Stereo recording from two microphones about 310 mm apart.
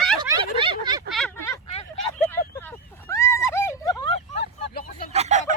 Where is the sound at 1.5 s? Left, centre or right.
Centre.